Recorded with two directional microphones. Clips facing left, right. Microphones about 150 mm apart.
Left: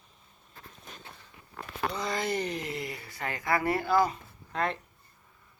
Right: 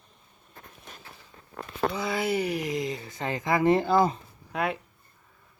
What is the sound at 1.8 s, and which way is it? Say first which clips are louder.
Speech: right 4 dB; 5° right (ahead or behind).